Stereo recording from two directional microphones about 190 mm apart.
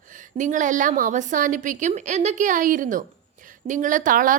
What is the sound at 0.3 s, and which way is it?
A woman's voice, 40° right (ahead or behind).